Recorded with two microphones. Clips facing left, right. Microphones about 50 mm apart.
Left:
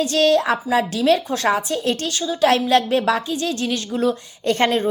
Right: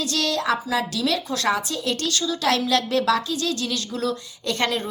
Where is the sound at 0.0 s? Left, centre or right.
Left.